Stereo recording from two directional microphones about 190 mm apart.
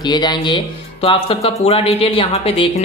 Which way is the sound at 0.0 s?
20° left (ahead or behind).